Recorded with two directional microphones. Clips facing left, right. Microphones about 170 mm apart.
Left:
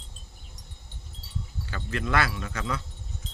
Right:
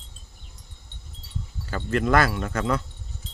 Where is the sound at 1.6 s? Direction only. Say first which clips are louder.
Right 8 dB; 45° right (ahead or behind).